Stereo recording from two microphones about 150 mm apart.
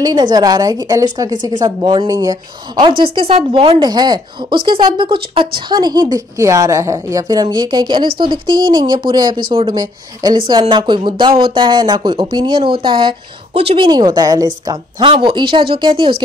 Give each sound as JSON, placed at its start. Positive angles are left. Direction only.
{"t": 0.0, "sound": "a woman's voice", "side_deg": -25}
{"t": 3.0, "sound": "a woman's voice", "side_deg": -40}